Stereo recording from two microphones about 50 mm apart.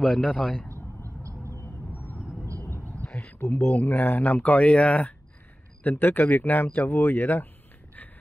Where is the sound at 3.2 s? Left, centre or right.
Left.